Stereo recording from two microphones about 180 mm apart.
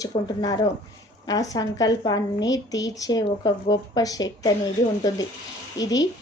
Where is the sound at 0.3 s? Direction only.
25° left (ahead or behind).